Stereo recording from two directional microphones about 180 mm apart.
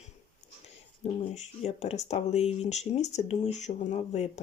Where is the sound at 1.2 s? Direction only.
40° left (ahead or behind).